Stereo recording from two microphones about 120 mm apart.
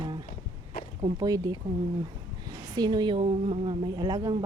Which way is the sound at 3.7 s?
35° right (ahead or behind).